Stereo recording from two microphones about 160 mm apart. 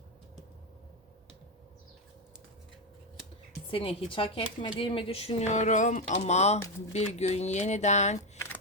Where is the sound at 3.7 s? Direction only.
35° left (ahead or behind).